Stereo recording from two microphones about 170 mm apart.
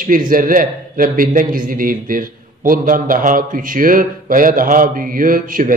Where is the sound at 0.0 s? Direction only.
55° right (ahead or behind).